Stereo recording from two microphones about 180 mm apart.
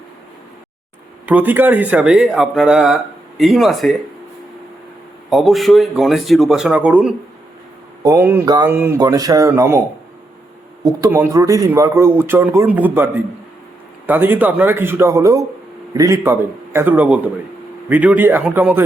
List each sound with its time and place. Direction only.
1.3 s speech: 10° right (ahead or behind)
5.3 s speech: centre (ahead or behind)
10.8 s speech: 15° right (ahead or behind)
14.1 s speech: 10° right (ahead or behind)